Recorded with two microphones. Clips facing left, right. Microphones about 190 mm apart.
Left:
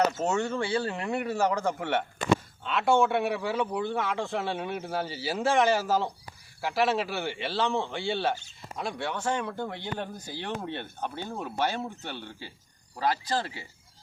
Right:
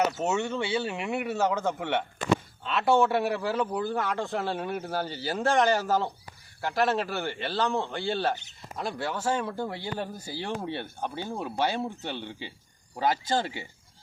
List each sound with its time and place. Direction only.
0.2 s speech: 15° right (ahead or behind)
0.7 s a man's voice: 5° right (ahead or behind); by 13.7 s 25° right (ahead or behind)